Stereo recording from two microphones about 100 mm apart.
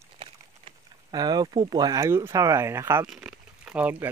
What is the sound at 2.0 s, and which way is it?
Speech, 25° right (ahead or behind).